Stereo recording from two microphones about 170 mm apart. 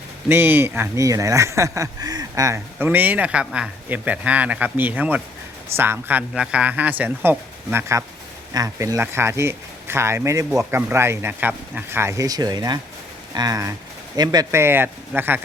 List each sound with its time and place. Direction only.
0.3 s speech: 15° right (ahead or behind)